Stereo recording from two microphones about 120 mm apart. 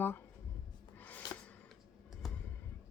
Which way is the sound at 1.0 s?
15° left (ahead or behind).